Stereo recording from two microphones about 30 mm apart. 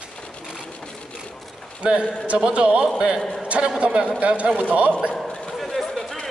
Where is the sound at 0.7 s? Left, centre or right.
Left.